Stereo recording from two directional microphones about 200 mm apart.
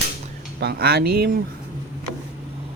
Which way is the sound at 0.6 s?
55° right (ahead or behind).